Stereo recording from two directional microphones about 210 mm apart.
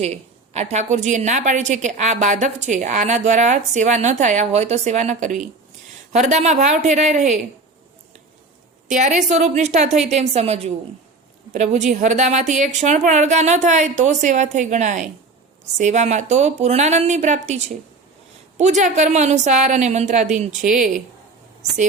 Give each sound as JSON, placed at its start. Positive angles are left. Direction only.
{"t": 0.0, "sound": "a woman's voice", "side_deg": -30}
{"t": 8.9, "sound": "a woman's voice", "side_deg": -35}